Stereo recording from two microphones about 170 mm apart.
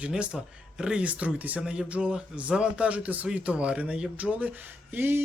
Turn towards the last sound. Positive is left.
turn(degrees=-10)  # may be behind; listen again after turning